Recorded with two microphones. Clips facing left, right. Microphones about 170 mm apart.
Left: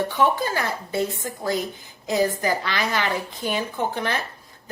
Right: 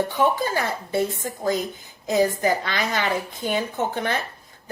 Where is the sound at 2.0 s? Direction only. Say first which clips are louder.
Right 2 dB; 20° right (ahead or behind).